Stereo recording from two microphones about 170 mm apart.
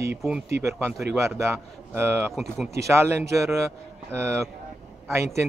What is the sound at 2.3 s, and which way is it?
Speech, centre (ahead or behind).